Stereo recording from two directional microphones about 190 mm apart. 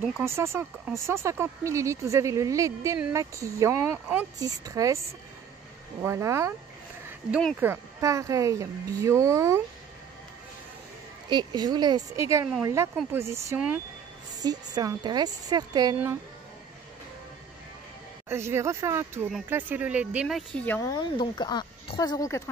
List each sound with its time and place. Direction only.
0.2 s speech: 15° right (ahead or behind)
6.0 s speech: 15° right (ahead or behind)
7.1 s a sound: 5° right (ahead or behind)
7.6 s speech: 15° right (ahead or behind)
11.2 s a woman's voice: 25° right (ahead or behind)
18.3 s speech: 15° right (ahead or behind); by 20.9 s 10° left (ahead or behind)
20.9 s speech: 25° left (ahead or behind)